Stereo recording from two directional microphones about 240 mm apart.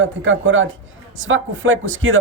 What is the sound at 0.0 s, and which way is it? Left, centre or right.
Speech, right.